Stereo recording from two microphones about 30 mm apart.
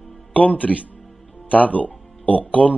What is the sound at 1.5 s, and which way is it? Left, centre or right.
Speech, left.